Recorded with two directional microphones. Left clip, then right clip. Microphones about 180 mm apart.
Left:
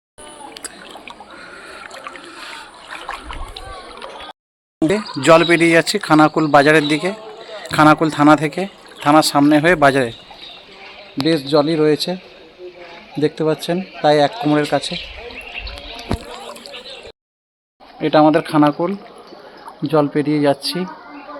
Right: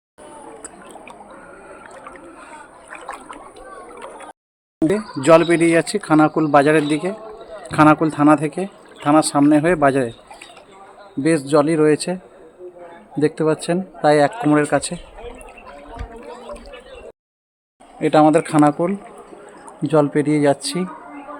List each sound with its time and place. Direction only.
1.8 s boat: 20° left (ahead or behind)
2.9 s water: 10° right (ahead or behind)
4.8 s a man's voice: centre (ahead or behind)
11.5 s speech: 5° right (ahead or behind)
13.4 s speech: 10° right (ahead or behind)
14.5 s speech: 10° right (ahead or behind)
18.0 s speech: 15° right (ahead or behind)